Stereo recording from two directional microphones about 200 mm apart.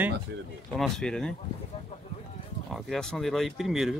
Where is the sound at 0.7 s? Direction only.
Centre (ahead or behind).